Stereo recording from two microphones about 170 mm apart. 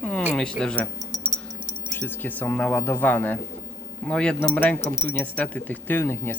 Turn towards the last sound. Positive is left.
turn(degrees=15)  # may be behind; listen again after turning